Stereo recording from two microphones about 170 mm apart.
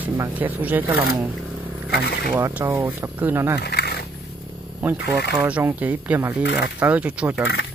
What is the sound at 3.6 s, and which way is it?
Wild animals, 75° left (ahead or behind).